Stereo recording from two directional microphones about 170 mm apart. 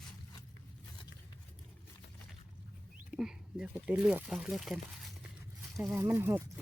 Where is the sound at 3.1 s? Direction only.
5° right (ahead or behind).